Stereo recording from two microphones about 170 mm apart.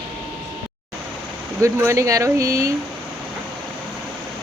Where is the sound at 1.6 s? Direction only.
15° right (ahead or behind).